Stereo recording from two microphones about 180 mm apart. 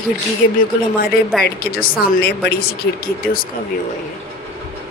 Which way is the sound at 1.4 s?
55° left (ahead or behind).